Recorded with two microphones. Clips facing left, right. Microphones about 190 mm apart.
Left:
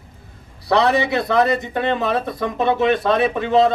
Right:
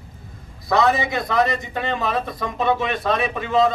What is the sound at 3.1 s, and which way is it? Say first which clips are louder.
Speech: left 4 dB; 30° left (ahead or behind).